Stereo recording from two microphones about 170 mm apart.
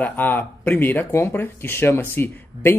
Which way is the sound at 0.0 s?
10° left (ahead or behind).